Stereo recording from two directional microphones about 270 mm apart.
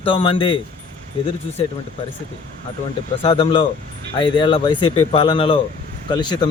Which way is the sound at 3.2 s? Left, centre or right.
Left.